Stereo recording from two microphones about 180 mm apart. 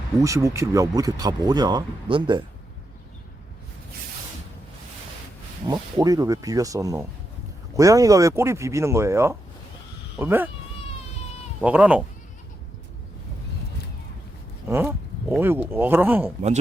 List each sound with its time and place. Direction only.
0.2 s speech: 15° right (ahead or behind)
5.6 s speech: 20° right (ahead or behind)
11.6 s speech: 10° right (ahead or behind)
14.7 s speech: 10° right (ahead or behind)